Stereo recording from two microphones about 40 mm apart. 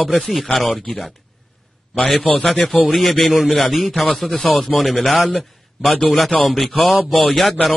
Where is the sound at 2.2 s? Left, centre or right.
Left.